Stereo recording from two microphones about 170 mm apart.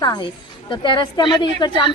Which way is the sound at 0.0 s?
25° left (ahead or behind).